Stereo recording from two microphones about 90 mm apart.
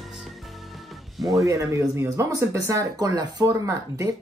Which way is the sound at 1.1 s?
Centre (ahead or behind).